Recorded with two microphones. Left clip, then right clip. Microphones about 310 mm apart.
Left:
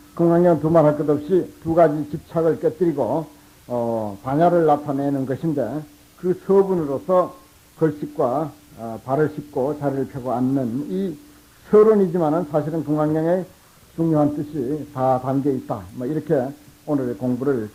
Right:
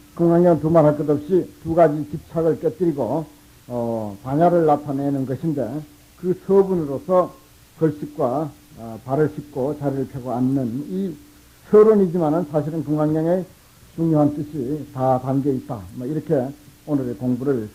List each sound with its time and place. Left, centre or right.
0.2 s speech: right